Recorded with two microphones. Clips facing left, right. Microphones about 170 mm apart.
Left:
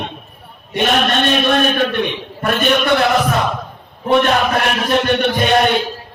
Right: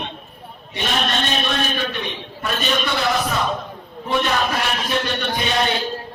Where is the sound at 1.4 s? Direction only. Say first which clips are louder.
Left 8 dB; 60° left (ahead or behind).